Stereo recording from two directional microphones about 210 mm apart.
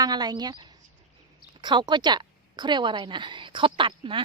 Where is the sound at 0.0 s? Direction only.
20° right (ahead or behind).